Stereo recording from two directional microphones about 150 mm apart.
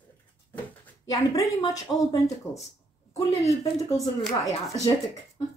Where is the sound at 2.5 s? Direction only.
45° left (ahead or behind).